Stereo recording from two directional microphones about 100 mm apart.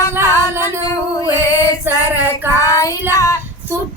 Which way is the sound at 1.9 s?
20° right (ahead or behind).